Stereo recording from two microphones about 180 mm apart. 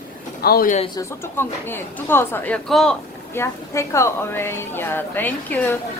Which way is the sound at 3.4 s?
15° left (ahead or behind).